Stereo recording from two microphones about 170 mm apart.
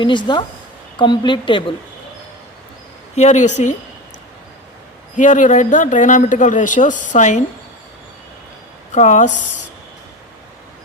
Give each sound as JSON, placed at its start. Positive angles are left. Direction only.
{"t": 0.0, "sound": "a woman's voice", "side_deg": 25}
{"t": 3.2, "sound": "speech", "side_deg": 45}
{"t": 5.1, "sound": "speech", "side_deg": 45}
{"t": 8.9, "sound": "speech", "side_deg": 45}